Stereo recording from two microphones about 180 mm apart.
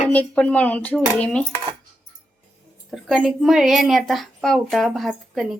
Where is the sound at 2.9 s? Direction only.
Centre (ahead or behind).